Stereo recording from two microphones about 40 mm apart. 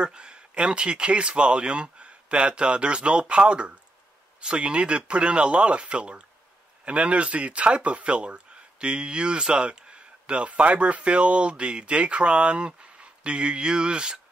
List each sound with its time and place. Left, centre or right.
0.0 s speech: right